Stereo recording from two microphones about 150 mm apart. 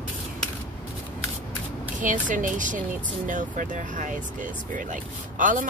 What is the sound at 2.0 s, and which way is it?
Speech, 60° right (ahead or behind).